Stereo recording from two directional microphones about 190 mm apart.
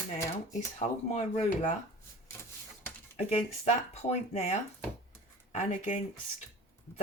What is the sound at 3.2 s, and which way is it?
Speech, 35° left (ahead or behind).